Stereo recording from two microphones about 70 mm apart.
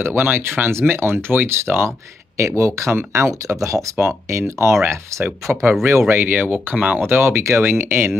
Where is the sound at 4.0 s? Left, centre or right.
Right.